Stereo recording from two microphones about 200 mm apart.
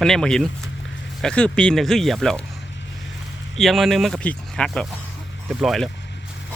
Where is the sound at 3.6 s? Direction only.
Centre (ahead or behind).